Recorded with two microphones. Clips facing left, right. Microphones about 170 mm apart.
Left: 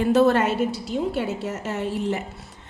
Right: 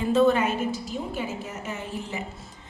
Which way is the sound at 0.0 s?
75° left (ahead or behind).